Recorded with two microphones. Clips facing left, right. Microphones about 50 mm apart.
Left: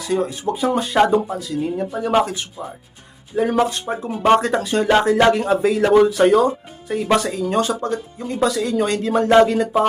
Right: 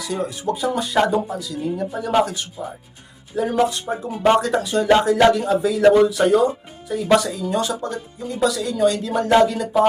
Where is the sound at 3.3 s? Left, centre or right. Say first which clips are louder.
Left 1 dB; left.